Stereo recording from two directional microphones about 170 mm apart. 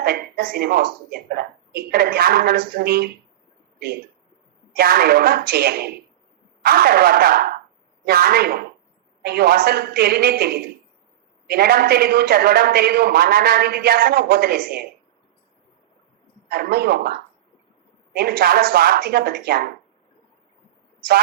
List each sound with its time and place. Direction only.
0.0 s a man's voice: 70° right (ahead or behind)
4.7 s a man's voice: 65° right (ahead or behind)
16.5 s a man's voice: 70° right (ahead or behind)